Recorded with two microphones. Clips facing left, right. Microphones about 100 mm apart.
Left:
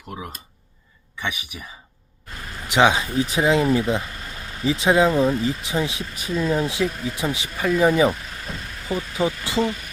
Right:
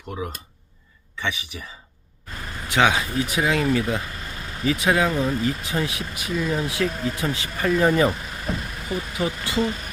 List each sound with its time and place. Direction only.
1.2 s speech: 10° left (ahead or behind)
2.6 s speech: 25° left (ahead or behind)
7.5 s speech: 5° left (ahead or behind)
8.9 s speech: 25° left (ahead or behind)